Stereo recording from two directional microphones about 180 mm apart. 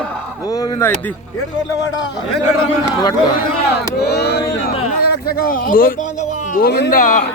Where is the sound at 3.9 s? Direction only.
65° left (ahead or behind).